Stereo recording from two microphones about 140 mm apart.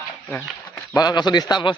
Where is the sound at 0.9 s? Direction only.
30° left (ahead or behind).